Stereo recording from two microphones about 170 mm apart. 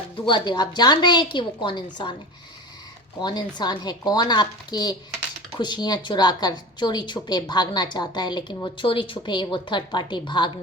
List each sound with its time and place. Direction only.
0.3 s a woman's voice: 25° left (ahead or behind)
3.2 s a woman's voice: 25° left (ahead or behind)